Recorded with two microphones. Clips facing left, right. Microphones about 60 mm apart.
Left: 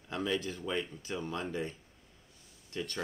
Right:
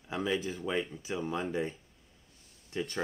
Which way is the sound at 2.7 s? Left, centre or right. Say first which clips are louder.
Right 3 dB; centre.